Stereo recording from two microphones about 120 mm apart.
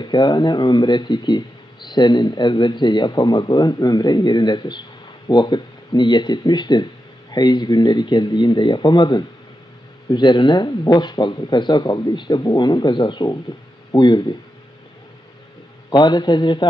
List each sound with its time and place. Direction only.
0.0 s speech: 40° left (ahead or behind)
15.9 s speech: 35° left (ahead or behind)